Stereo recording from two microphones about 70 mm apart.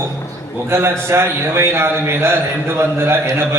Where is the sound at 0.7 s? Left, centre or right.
Right.